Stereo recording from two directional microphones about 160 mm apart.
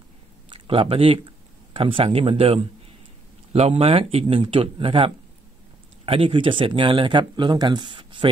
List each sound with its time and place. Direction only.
0.5 s speech: 35° right (ahead or behind)